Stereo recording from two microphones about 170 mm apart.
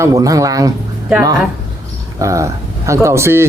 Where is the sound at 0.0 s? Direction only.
20° right (ahead or behind).